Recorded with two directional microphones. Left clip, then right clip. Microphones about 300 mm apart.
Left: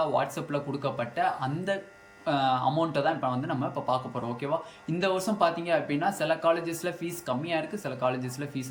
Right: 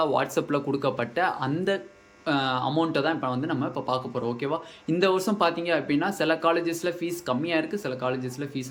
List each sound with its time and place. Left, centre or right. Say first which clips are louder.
0.0 s speech: right 3 dB; centre